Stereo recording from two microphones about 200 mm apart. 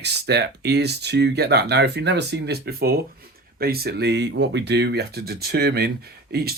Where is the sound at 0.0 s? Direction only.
55° right (ahead or behind).